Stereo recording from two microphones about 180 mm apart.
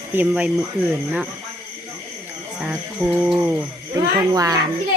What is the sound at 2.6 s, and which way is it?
Music, 5° right (ahead or behind).